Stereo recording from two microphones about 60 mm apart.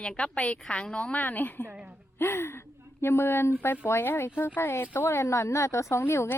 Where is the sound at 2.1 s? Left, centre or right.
Left.